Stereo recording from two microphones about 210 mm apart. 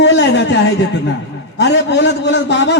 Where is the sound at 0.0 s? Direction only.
55° left (ahead or behind).